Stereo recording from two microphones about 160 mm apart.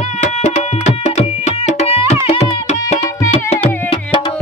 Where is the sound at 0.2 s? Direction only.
45° left (ahead or behind).